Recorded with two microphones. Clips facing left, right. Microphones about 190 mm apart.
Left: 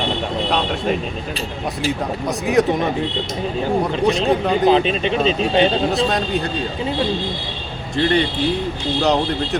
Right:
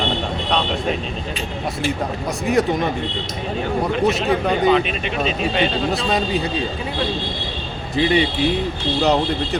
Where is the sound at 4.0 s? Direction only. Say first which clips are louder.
Left 1 dB; 5° right (ahead or behind).